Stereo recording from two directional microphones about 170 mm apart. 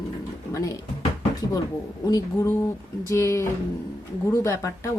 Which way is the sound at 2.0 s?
20° left (ahead or behind).